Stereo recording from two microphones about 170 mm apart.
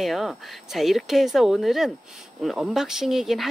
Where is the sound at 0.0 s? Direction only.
Centre (ahead or behind).